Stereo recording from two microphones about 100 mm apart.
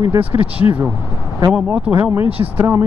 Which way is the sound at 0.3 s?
15° right (ahead or behind).